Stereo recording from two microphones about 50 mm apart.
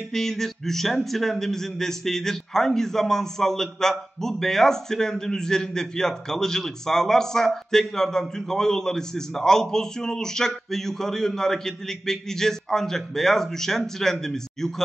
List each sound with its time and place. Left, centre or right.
0.1 s speech: centre